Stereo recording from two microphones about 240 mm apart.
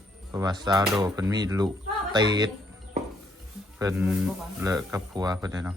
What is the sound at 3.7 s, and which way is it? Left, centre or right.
Speech, centre.